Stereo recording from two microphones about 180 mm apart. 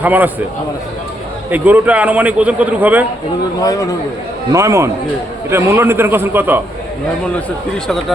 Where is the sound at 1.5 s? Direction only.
10° right (ahead or behind).